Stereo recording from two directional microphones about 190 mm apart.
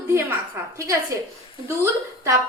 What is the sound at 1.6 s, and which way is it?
Speech, 15° right (ahead or behind).